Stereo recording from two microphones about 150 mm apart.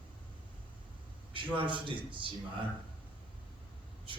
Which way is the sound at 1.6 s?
35° right (ahead or behind).